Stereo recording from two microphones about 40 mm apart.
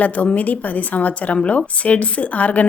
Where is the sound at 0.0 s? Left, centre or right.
Left.